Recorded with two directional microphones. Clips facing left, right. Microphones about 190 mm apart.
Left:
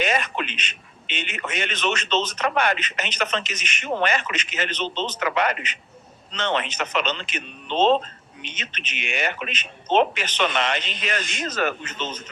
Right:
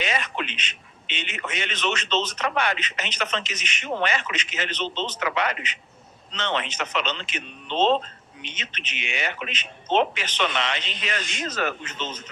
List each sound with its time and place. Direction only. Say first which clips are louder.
0.0 s a man's voice: left 4 dB; 50° left (ahead or behind)